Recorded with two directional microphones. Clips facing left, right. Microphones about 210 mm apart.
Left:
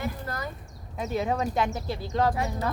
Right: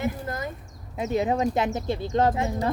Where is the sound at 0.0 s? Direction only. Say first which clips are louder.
Right 4 dB; 20° right (ahead or behind).